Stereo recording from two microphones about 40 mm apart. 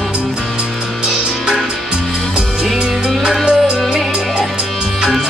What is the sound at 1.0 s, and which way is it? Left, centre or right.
Music, centre.